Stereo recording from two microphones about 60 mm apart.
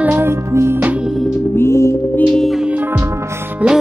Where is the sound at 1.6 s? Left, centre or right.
Left.